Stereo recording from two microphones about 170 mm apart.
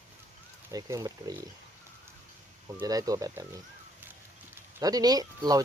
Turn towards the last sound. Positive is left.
turn(degrees=-20)  # may be behind; listen again after turning